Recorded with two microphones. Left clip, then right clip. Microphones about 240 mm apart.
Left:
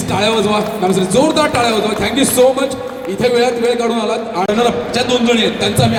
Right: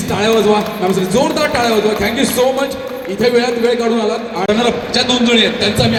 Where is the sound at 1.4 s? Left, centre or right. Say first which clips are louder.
Left 1 dB; left.